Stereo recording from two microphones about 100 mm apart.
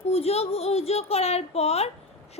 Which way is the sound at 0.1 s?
90° left.